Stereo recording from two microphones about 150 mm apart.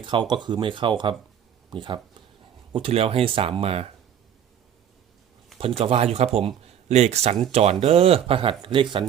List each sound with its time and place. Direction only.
0.0 s speech: 30° right (ahead or behind)
5.5 s speech: 40° right (ahead or behind)